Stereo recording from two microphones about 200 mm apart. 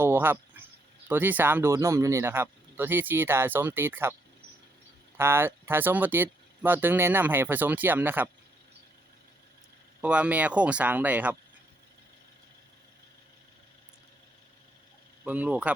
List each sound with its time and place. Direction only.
0.0 s a sound: 10° right (ahead or behind)
1.0 s speech: 10° right (ahead or behind)
5.1 s speech: 10° right (ahead or behind)
10.0 s speech: 5° right (ahead or behind)
15.2 s speech: 5° right (ahead or behind)